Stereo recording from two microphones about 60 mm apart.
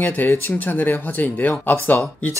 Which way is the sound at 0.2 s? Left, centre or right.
Left.